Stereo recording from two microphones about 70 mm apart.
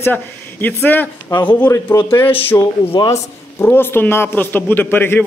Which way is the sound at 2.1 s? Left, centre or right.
Left.